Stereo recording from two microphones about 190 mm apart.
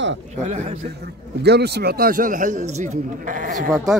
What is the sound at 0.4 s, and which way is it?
Speech, 35° right (ahead or behind).